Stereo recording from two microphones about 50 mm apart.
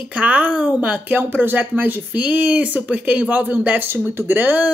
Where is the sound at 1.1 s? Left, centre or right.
Right.